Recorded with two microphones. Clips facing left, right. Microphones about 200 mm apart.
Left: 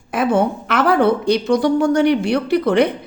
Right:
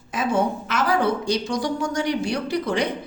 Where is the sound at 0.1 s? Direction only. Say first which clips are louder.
Left 5 dB; 60° left (ahead or behind).